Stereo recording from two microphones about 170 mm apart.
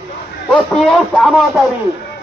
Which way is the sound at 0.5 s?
Centre (ahead or behind).